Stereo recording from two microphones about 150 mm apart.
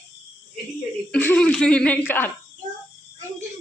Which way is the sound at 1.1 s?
10° left (ahead or behind).